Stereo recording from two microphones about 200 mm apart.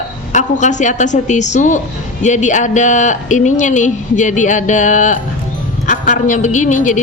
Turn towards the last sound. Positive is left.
turn(degrees=40)  # may be behind; listen again after turning